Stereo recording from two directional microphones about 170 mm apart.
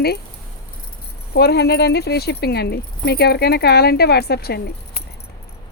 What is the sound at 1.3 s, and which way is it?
Speech, 75° left (ahead or behind).